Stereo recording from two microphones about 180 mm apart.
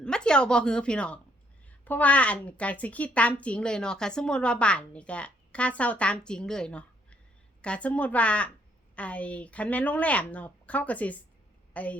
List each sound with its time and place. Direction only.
0.0 s a woman's voice: 5° left (ahead or behind)